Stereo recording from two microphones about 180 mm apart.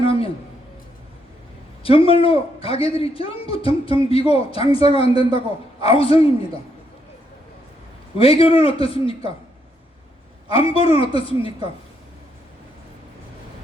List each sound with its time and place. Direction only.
0.0 s a sound: 30° left (ahead or behind)
1.8 s a man's voice: 30° left (ahead or behind)
8.2 s a man's voice: 30° left (ahead or behind)
10.5 s a man's voice: 30° left (ahead or behind)